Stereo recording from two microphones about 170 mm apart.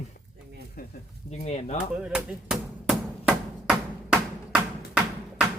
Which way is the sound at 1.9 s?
5° right (ahead or behind).